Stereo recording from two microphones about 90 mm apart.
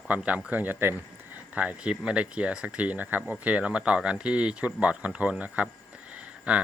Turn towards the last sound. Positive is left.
turn(degrees=-15)  # may be behind; listen again after turning